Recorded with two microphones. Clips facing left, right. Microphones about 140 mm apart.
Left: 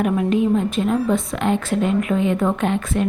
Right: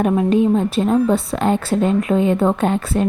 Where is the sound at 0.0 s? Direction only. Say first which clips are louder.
Right 3 dB; 30° right (ahead or behind).